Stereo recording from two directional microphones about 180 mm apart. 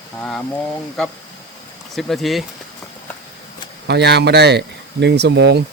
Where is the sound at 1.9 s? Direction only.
Centre (ahead or behind).